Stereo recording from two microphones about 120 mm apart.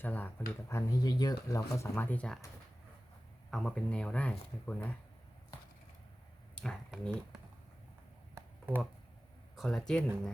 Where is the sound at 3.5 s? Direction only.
5° left (ahead or behind).